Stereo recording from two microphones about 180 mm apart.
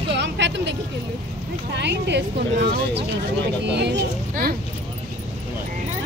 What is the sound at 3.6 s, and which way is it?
Speech, 70° right (ahead or behind).